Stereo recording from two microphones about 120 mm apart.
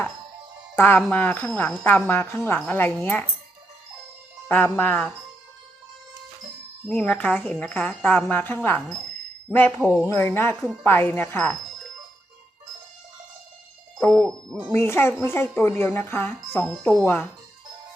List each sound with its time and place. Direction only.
0.8 s speech: 15° left (ahead or behind)
4.4 s speech: 15° left (ahead or behind)
6.8 s speech: 10° left (ahead or behind)
14.0 s speech: 10° left (ahead or behind)
14.7 s a woman's voice: 20° left (ahead or behind)